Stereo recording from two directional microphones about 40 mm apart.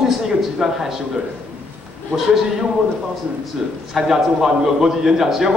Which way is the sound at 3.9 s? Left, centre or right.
Centre.